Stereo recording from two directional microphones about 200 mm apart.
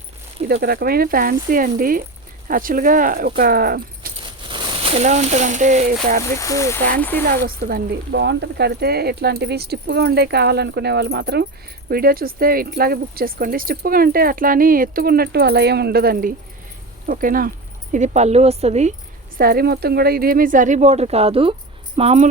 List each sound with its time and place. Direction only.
0.4 s speech: 50° right (ahead or behind)
4.2 s speech: 25° right (ahead or behind)
6.4 s speech: 15° left (ahead or behind)
7.3 s speech: 45° right (ahead or behind)
19.4 s speech: 50° right (ahead or behind); by 22.3 s 30° right (ahead or behind)